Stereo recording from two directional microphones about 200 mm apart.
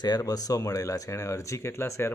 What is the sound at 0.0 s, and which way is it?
Speech, 20° left (ahead or behind).